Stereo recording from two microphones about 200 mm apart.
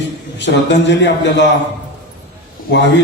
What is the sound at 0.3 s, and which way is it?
A man's voice, 60° left (ahead or behind).